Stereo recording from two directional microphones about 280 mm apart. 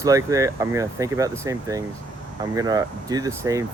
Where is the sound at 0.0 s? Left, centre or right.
Centre.